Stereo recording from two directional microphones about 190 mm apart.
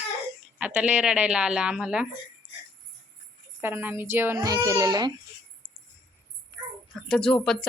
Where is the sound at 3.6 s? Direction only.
10° right (ahead or behind).